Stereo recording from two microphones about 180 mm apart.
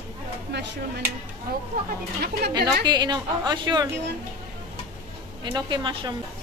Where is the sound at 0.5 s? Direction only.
75° right (ahead or behind).